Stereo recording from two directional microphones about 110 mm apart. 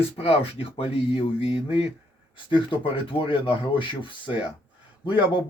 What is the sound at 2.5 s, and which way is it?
Speech, 50° left (ahead or behind).